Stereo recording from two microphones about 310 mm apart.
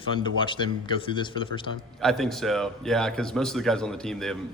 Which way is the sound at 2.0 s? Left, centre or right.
Centre.